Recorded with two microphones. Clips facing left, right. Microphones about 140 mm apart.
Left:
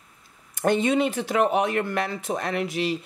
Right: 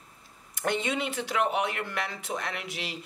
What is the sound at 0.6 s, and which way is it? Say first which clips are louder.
Speech: left 8 dB; 40° left (ahead or behind).